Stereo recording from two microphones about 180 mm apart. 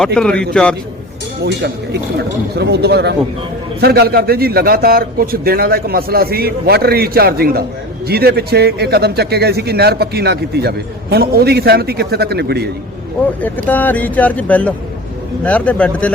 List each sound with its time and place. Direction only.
0.0 s a man's voice: 5° left (ahead or behind)
1.5 s a man's voice: 70° right (ahead or behind)
13.7 s speech: 10° left (ahead or behind)